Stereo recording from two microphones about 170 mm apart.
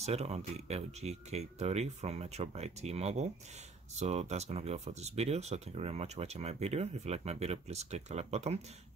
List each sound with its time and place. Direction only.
0.0 s speech: 40° right (ahead or behind)